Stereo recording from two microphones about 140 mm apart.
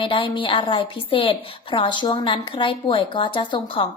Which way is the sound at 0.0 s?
35° left (ahead or behind).